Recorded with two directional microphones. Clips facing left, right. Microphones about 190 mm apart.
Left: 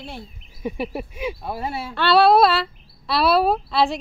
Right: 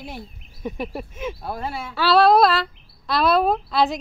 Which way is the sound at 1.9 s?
Centre (ahead or behind).